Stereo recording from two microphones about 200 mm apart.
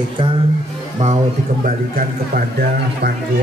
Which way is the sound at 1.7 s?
45° right (ahead or behind).